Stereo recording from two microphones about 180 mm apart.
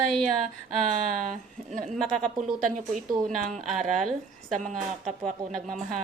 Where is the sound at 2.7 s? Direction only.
45° right (ahead or behind).